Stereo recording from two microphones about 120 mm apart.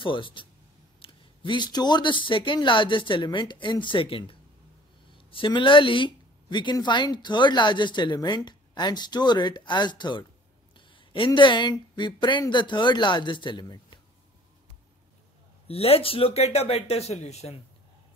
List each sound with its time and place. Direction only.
0.0 s speech: 45° left (ahead or behind)
15.7 s speech: 55° left (ahead or behind)